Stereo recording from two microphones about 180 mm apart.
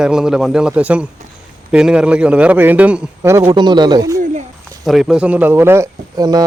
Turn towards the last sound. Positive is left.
turn(degrees=-20)  # may be behind; listen again after turning